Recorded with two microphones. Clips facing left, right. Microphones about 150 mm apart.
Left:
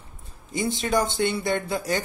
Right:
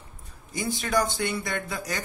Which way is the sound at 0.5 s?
20° left (ahead or behind).